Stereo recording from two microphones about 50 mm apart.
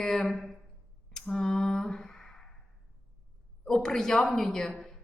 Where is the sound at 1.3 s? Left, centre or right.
Centre.